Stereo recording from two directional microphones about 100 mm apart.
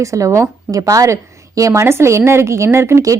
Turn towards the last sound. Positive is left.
turn(degrees=-30)  # may be behind; listen again after turning